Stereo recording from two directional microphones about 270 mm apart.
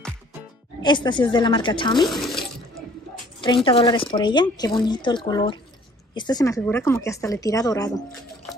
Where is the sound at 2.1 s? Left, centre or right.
Centre.